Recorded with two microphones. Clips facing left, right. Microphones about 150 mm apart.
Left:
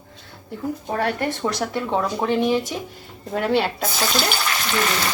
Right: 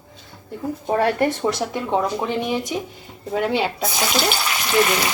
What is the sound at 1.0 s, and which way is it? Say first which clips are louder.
Speech: right 4 dB; 20° right (ahead or behind).